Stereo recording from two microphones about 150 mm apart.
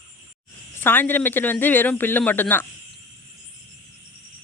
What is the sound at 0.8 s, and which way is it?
Speech, 15° left (ahead or behind).